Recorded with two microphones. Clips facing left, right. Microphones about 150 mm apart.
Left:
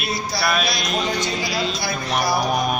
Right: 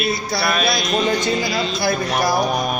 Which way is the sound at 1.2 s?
50° right (ahead or behind).